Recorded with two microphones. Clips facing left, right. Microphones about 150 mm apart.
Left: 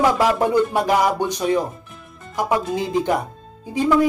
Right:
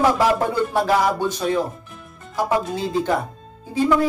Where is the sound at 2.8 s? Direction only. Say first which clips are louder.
Left 1 dB; 15° left (ahead or behind).